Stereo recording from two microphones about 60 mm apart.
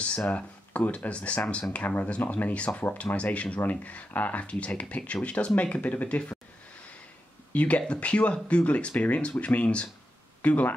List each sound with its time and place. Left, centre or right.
0.7 s speech: left
7.5 s speech: left